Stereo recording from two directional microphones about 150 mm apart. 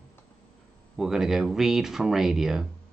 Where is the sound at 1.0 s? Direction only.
Centre (ahead or behind).